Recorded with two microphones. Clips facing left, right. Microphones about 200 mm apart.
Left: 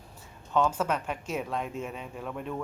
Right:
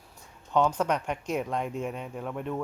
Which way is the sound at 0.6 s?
5° left (ahead or behind).